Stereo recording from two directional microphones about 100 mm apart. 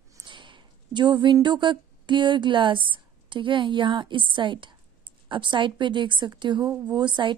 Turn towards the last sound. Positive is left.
turn(degrees=-50)  # may be behind; listen again after turning